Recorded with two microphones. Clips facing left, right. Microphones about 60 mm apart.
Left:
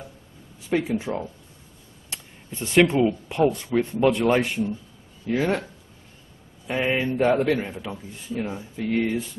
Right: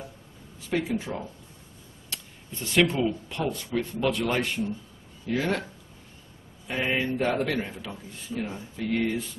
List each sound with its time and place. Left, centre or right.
0.7 s a man's voice: centre
2.6 s a man's voice: left
6.7 s a man's voice: centre